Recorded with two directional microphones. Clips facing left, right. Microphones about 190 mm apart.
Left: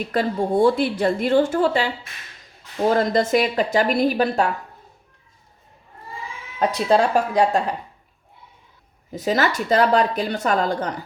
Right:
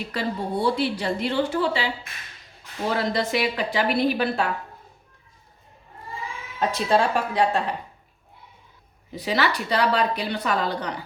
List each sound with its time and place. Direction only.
0.1 s speech: 50° left (ahead or behind)
2.9 s speech: 45° left (ahead or behind)
6.6 s speech: 40° left (ahead or behind)
9.1 s speech: 45° left (ahead or behind)